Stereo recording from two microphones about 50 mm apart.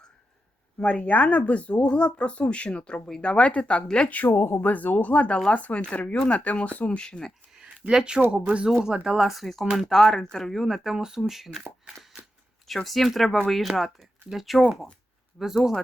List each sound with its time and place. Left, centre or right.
0.9 s speech: left
4.3 s speech: left
4.6 s speech: left; by 7.3 s centre
7.5 s a sound: centre
8.3 s speech: centre
10.7 s speech: centre
12.6 s speech: centre